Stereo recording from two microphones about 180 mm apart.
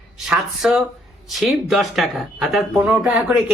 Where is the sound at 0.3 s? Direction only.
5° right (ahead or behind).